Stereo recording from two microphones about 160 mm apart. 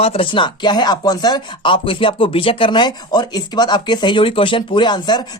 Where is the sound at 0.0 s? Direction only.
35° left (ahead or behind).